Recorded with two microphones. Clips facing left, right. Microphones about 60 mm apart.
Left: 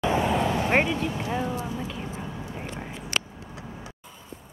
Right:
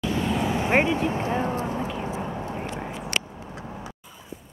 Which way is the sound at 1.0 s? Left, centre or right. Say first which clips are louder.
Right 3 dB; right.